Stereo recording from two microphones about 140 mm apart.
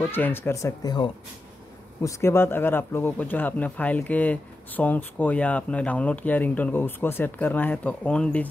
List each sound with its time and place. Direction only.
0.0 s speech: 15° left (ahead or behind)